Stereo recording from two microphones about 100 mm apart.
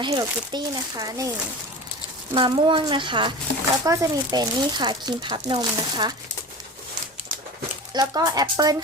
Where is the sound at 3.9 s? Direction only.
40° right (ahead or behind).